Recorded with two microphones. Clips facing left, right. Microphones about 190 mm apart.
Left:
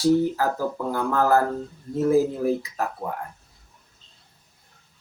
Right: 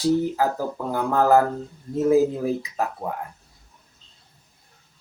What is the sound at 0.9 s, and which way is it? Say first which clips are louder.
Speech: right 3 dB; 15° right (ahead or behind).